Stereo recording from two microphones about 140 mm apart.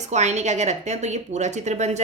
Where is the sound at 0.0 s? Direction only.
55° right (ahead or behind).